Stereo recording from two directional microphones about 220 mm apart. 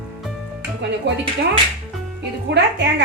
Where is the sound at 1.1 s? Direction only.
50° right (ahead or behind).